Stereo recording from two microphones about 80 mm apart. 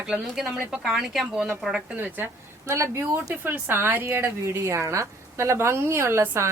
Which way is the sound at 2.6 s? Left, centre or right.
Right.